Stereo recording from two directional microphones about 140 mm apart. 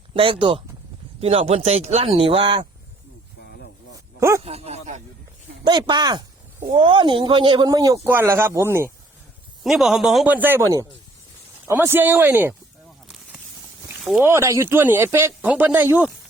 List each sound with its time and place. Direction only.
0.1 s speech: 40° right (ahead or behind)
4.2 s speech: 20° right (ahead or behind)
4.4 s speech: 50° right (ahead or behind)
5.6 s speech: 30° right (ahead or behind)
6.7 s speech: 40° right (ahead or behind); by 8.9 s 20° right (ahead or behind)
9.6 s a man's voice: centre (ahead or behind)
10.3 s speech: 15° right (ahead or behind)
14.0 s speech: centre (ahead or behind)
14.3 s speech: 20° right (ahead or behind)